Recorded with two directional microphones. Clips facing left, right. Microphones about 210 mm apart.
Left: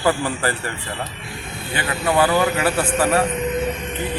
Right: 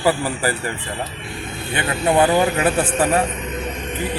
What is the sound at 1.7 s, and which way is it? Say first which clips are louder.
A man's voice: right 2 dB; 25° right (ahead or behind).